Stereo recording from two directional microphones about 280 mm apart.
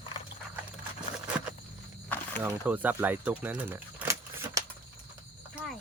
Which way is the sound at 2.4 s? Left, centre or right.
Centre.